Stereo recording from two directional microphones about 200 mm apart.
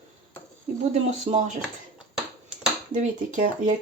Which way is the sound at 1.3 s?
30° right (ahead or behind).